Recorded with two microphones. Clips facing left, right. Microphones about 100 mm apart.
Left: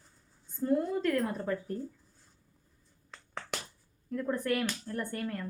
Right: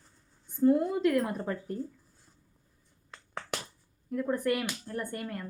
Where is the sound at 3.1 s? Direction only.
10° right (ahead or behind).